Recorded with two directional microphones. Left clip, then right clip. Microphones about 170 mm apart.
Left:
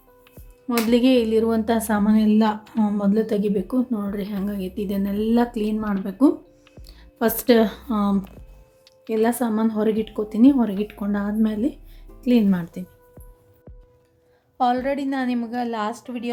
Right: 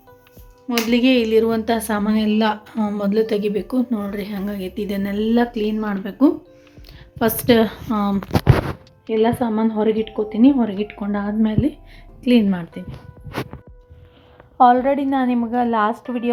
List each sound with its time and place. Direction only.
0.9 s a woman's voice: 10° left (ahead or behind)
14.6 s a woman's voice: 5° right (ahead or behind)